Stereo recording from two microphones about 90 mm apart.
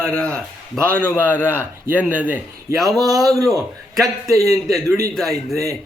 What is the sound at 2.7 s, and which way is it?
A man's voice, centre (ahead or behind).